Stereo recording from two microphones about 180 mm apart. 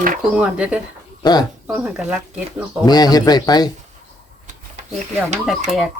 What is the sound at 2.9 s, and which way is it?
Speech, 20° left (ahead or behind).